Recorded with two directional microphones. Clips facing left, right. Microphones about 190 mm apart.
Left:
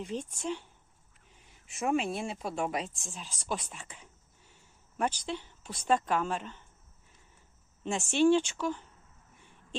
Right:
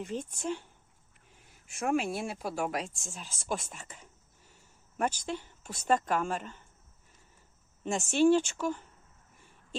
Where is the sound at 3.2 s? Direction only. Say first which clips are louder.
Right 1 dB; 45° right (ahead or behind).